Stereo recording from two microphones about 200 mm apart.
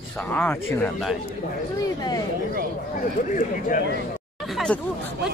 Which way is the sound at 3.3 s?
45° left (ahead or behind).